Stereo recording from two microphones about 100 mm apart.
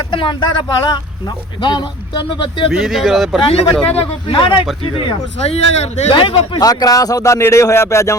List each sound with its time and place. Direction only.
0.1 s speech: 55° left (ahead or behind)
2.7 s speech: centre (ahead or behind)
3.4 s speech: 90° left
3.8 s speech: 75° left (ahead or behind); by 4.6 s 55° left (ahead or behind)
5.5 s speech: 90° left
6.1 s speech: 60° left (ahead or behind)
6.6 s speech: 40° left (ahead or behind)